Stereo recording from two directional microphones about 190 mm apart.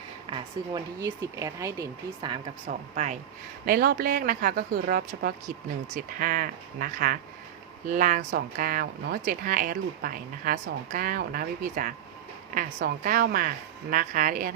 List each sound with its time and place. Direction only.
0.3 s speech: 25° right (ahead or behind)
2.9 s speech: 40° right (ahead or behind)
3.7 s speech: 50° right (ahead or behind)